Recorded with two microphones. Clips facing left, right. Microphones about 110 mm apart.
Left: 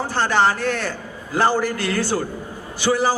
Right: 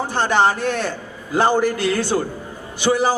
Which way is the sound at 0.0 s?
20° right (ahead or behind).